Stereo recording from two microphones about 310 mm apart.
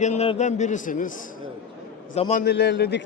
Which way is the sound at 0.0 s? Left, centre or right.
Left.